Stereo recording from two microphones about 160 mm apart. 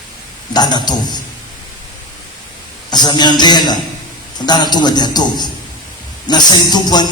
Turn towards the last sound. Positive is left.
turn(degrees=25)  # may be behind; listen again after turning